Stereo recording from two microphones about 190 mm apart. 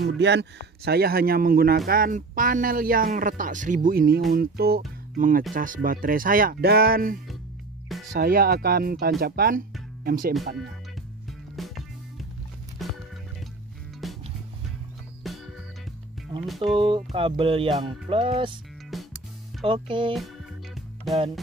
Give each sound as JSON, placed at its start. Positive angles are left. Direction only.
{"t": 0.0, "sound": "speech", "side_deg": -65}
{"t": 12.8, "sound": "music", "side_deg": 0}
{"t": 14.0, "sound": "music", "side_deg": 0}
{"t": 15.2, "sound": "music", "side_deg": 0}
{"t": 16.4, "sound": "speech", "side_deg": 0}
{"t": 16.7, "sound": "speech", "side_deg": -25}
{"t": 19.6, "sound": "speech", "side_deg": -25}
{"t": 20.7, "sound": "music", "side_deg": 0}